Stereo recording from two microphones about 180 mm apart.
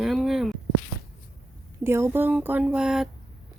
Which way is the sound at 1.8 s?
15° right (ahead or behind).